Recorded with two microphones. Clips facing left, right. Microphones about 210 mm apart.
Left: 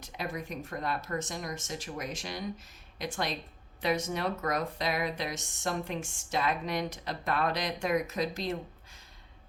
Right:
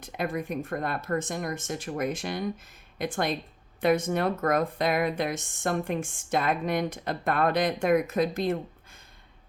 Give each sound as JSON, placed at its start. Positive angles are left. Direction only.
{"t": 0.0, "sound": "speech", "side_deg": -55}